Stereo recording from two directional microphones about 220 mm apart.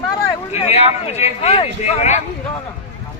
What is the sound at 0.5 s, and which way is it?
Speech, 30° left (ahead or behind).